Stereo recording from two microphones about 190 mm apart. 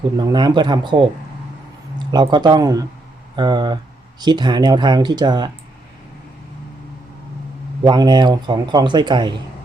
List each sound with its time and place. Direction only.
0.2 s a man's voice: 25° right (ahead or behind)
7.9 s a man's voice: 20° right (ahead or behind)